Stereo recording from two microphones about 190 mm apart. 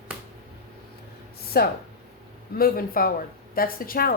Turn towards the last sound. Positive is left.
turn(degrees=50)  # may be behind; listen again after turning